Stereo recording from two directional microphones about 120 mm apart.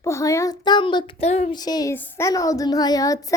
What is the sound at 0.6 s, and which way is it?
Child singing, 40° left (ahead or behind).